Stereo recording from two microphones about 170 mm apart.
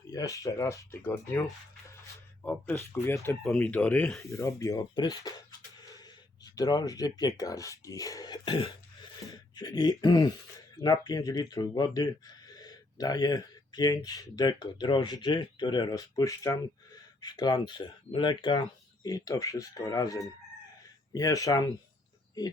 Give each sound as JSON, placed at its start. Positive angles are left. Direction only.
{"t": 0.1, "sound": "speech", "side_deg": 20}